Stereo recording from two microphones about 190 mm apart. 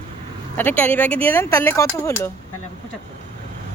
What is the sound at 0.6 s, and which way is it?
Speech, 10° left (ahead or behind).